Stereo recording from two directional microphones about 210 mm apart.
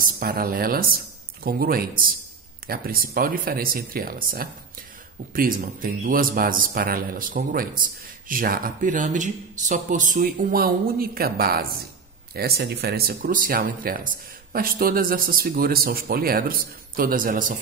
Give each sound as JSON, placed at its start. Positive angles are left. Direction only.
{"t": 0.0, "sound": "speech", "side_deg": -45}